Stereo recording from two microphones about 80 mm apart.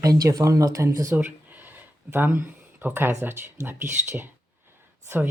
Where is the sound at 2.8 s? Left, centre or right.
Right.